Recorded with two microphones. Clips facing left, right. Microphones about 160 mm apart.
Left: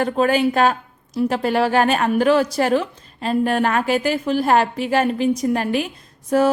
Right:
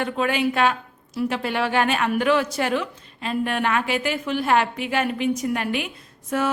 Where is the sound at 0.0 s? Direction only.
40° left (ahead or behind).